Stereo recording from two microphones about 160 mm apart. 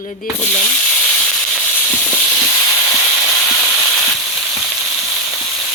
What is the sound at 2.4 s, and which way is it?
Steam, 20° left (ahead or behind).